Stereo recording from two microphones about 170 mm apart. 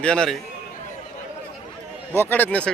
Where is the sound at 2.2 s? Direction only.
10° left (ahead or behind).